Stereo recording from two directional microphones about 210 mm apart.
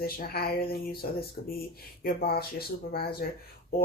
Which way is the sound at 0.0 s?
45° left (ahead or behind).